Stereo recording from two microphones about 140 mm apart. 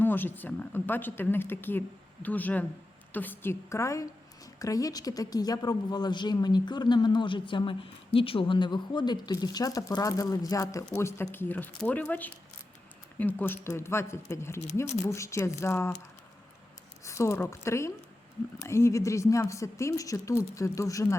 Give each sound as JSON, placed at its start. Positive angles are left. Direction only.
{"t": 0.0, "sound": "a woman's voice", "side_deg": 15}
{"t": 17.0, "sound": "a woman's voice", "side_deg": 20}